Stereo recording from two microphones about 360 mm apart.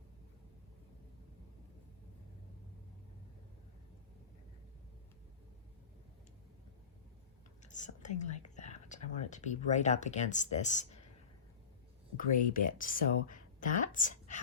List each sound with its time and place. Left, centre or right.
7.6 s whispering: centre
8.2 s speech: centre
12.1 s speech: left